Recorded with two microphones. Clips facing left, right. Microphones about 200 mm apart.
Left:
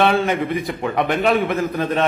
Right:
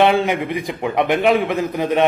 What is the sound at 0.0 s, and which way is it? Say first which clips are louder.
A man's voice: right 2 dB; 15° right (ahead or behind).